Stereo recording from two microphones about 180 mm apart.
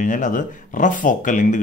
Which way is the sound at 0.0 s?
45° left (ahead or behind).